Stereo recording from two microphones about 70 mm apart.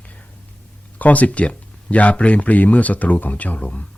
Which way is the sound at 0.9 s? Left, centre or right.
Left.